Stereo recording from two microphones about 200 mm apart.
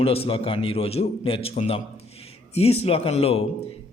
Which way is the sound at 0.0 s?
30° left (ahead or behind).